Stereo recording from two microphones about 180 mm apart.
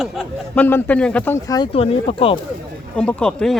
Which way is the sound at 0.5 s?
10° left (ahead or behind).